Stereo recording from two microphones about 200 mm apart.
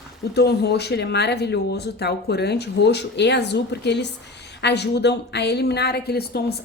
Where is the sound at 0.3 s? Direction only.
55° left (ahead or behind).